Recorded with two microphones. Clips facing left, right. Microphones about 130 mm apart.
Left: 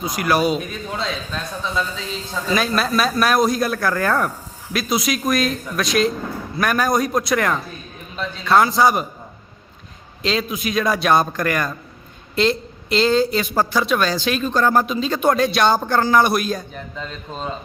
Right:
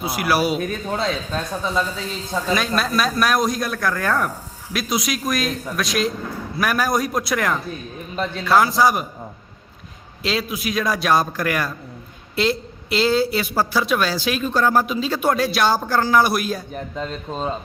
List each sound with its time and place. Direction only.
0.0 s a woman's voice: 10° right (ahead or behind)
0.7 s speech: 45° right (ahead or behind)
2.5 s a man's voice: centre (ahead or behind)
8.1 s speech: 50° right (ahead or behind)
8.4 s a man's voice: centre (ahead or behind)
10.2 s a man's voice: 5° right (ahead or behind)